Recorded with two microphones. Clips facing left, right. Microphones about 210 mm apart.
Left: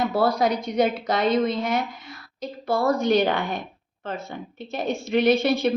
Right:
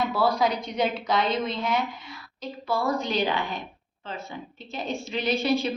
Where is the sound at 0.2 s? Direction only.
45° left (ahead or behind).